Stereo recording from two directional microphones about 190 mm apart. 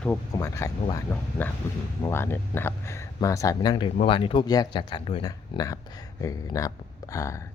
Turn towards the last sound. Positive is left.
turn(degrees=15)  # may be behind; listen again after turning